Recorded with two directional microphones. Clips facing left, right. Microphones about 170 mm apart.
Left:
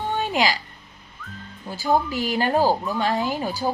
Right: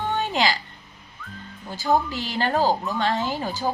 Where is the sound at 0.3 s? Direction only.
15° left (ahead or behind).